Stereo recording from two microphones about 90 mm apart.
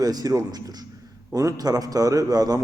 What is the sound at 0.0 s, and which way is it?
A man's voice, 45° right (ahead or behind).